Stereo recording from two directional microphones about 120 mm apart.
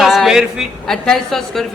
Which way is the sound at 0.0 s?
5° right (ahead or behind).